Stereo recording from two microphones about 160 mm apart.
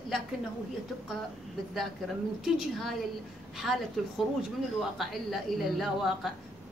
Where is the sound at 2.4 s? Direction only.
Centre (ahead or behind).